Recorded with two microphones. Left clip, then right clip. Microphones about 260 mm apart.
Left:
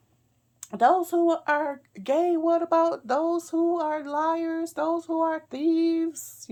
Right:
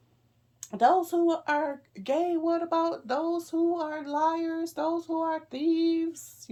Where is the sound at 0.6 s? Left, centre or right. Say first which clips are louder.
Left 2 dB; centre.